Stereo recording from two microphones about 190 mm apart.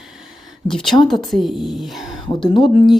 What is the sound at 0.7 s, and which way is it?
Speech, centre (ahead or behind).